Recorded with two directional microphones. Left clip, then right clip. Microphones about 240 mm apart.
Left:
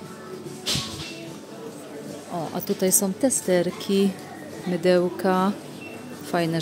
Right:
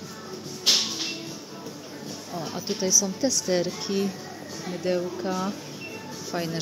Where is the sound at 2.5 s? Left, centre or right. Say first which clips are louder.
Right 1 dB; left.